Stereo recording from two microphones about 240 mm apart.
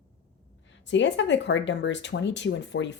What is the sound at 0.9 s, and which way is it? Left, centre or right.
Speech, left.